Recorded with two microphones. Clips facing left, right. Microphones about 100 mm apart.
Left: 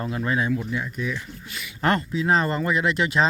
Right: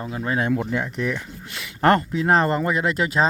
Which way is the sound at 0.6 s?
70° right (ahead or behind).